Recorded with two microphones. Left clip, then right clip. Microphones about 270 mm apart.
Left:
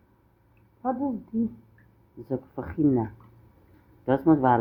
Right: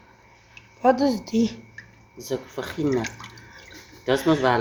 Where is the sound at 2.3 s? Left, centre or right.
Left.